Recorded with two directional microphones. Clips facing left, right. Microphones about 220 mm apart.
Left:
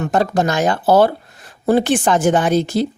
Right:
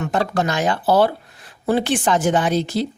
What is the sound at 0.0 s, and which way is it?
Speech, 45° left (ahead or behind).